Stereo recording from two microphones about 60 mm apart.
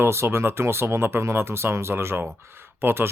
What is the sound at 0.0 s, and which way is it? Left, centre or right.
Speech, right.